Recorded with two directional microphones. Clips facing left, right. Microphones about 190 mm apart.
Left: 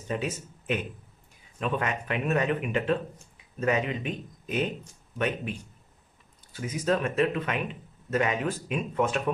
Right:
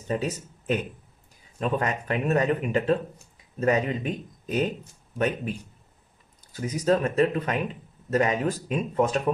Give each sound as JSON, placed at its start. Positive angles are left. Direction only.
{"t": 0.1, "sound": "speech", "side_deg": -40}
{"t": 6.5, "sound": "speech", "side_deg": -40}